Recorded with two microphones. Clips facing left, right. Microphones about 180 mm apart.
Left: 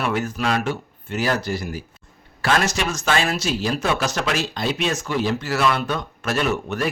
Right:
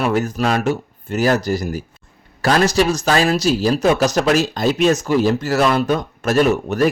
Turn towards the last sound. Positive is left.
turn(degrees=-40)  # may be behind; listen again after turning